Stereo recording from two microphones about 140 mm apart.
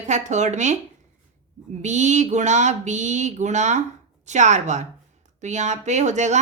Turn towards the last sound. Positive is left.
turn(degrees=-55)  # may be behind; listen again after turning